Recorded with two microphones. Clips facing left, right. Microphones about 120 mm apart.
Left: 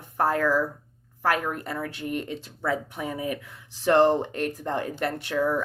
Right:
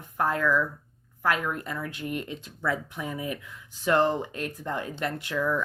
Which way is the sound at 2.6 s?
30° left (ahead or behind).